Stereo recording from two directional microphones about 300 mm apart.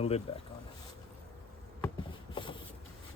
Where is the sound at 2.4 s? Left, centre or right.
Centre.